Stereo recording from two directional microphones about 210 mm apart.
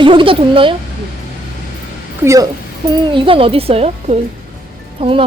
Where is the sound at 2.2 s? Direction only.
15° right (ahead or behind).